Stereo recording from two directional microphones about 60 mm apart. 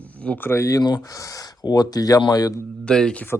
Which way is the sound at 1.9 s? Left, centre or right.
Left.